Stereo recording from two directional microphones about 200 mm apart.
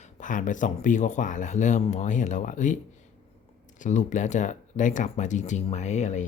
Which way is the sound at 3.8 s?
40° left (ahead or behind).